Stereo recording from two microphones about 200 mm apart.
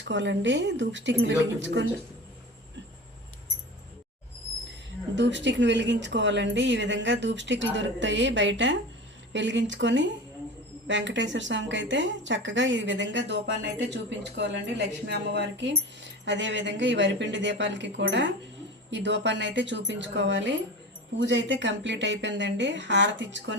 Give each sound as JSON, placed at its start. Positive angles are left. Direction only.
{"t": 0.0, "sound": "a woman's voice", "side_deg": -65}
{"t": 5.1, "sound": "a woman's voice", "side_deg": -65}